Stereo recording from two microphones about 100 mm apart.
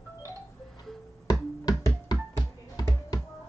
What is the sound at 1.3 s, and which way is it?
Music, 40° left (ahead or behind).